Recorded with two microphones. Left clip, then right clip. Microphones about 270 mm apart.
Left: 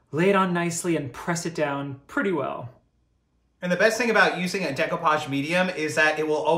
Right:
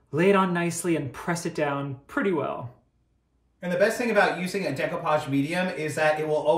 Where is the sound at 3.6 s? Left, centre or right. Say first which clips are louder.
Left 1 dB; centre.